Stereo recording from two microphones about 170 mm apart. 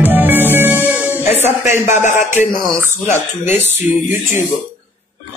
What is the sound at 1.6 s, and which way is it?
Speech, 45° left (ahead or behind).